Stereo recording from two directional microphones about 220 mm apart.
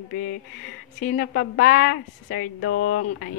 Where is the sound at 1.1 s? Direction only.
50° left (ahead or behind).